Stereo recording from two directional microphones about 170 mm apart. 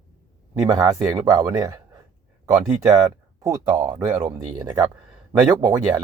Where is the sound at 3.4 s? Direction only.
20° right (ahead or behind).